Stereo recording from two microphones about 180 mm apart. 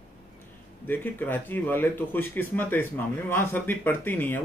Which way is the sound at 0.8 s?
10° left (ahead or behind).